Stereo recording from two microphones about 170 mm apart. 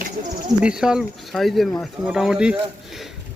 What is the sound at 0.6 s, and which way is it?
Speech, 5° right (ahead or behind).